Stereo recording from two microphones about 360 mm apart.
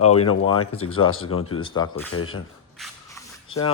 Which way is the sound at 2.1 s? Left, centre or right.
Left.